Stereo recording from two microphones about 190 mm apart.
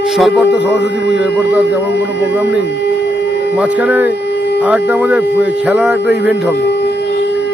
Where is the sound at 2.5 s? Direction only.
65° left (ahead or behind).